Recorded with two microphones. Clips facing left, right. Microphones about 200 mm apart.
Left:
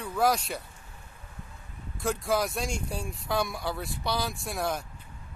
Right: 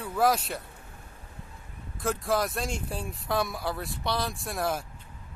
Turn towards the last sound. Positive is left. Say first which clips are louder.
# right 1 dB
turn(degrees=0)  # may be behind; listen again after turning